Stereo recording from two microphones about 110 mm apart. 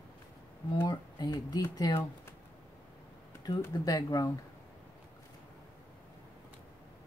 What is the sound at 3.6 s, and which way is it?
Speech, 30° left (ahead or behind).